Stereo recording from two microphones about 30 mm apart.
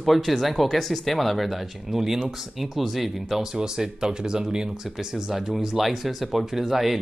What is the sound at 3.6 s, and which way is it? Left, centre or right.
Speech, right.